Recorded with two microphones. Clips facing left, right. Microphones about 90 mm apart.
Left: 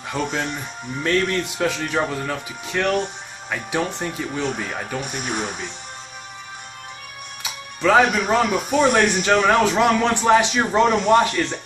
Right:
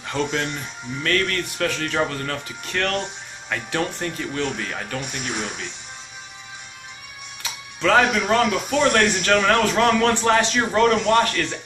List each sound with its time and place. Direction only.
0.1 s speech: 5° left (ahead or behind)
1.0 s speech: 20° left (ahead or behind)
5.3 s speech: 45° left (ahead or behind)
7.4 s music: 10° left (ahead or behind)
8.1 s speech: 5° left (ahead or behind)